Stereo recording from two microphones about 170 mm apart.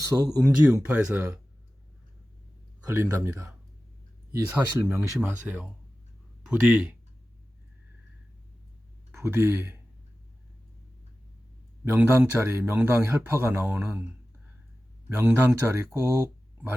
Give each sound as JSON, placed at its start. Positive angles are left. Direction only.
{"t": 0.1, "sound": "speech", "side_deg": -5}
{"t": 2.8, "sound": "speech", "side_deg": -15}
{"t": 9.1, "sound": "speech", "side_deg": -15}
{"t": 11.9, "sound": "speech", "side_deg": -10}
{"t": 15.1, "sound": "speech", "side_deg": -15}